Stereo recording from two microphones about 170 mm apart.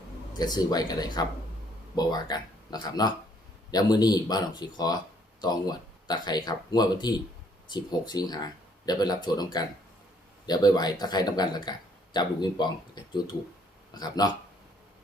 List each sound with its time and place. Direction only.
0.3 s speech: 25° left (ahead or behind)